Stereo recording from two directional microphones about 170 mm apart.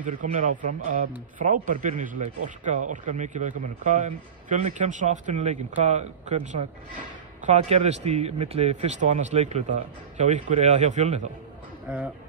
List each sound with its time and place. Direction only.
0.0 s speech: 45° right (ahead or behind)
11.9 s speech: 5° right (ahead or behind)